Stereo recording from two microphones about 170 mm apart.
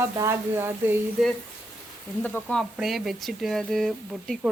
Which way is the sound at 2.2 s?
5° left (ahead or behind).